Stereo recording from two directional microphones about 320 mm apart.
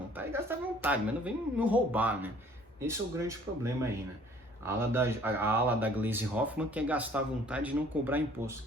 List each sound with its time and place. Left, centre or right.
0.2 s speech: centre